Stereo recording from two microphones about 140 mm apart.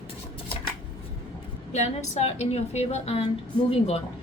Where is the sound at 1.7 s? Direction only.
55° left (ahead or behind).